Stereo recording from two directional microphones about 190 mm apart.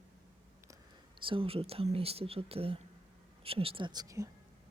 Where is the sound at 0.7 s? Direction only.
25° right (ahead or behind).